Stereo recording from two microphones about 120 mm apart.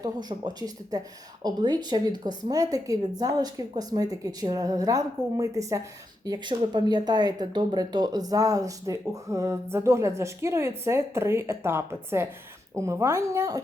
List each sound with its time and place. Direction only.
0.0 s speech: 35° right (ahead or behind)